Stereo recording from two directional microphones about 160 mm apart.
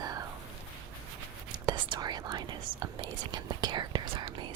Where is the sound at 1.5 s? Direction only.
30° right (ahead or behind).